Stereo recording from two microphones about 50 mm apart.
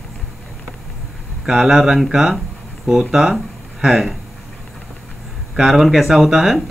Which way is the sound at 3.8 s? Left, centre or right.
Centre.